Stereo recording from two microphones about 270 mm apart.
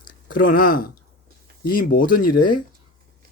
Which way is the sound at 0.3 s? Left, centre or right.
Left.